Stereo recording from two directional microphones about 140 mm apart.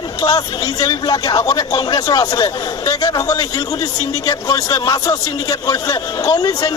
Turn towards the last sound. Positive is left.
turn(degrees=25)  # may be behind; listen again after turning